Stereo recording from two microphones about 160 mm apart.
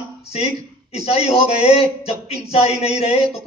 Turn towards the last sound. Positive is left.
turn(degrees=40)  # may be behind; listen again after turning